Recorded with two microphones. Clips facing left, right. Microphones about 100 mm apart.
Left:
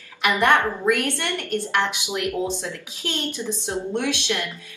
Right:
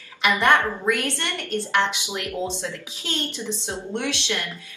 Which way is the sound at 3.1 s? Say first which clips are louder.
Left 1 dB; 15° left (ahead or behind).